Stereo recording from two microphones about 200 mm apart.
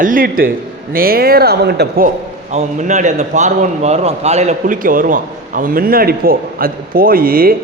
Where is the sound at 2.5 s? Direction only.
35° right (ahead or behind).